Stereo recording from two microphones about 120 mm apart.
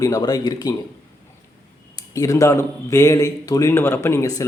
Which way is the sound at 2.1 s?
25° left (ahead or behind).